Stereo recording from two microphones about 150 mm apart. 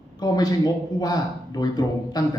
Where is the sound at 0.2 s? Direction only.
25° left (ahead or behind).